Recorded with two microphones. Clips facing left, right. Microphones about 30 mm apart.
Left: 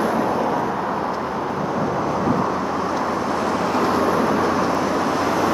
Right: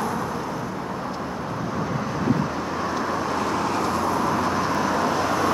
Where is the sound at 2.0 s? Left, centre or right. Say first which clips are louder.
Left 2 dB; centre.